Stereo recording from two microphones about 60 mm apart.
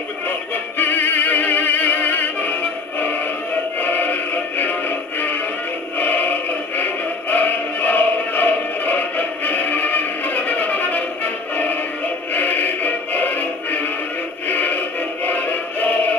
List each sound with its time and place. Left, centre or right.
0.7 s music: left
5.9 s synthetic singing: left
6.8 s choir: left
12.4 s music: left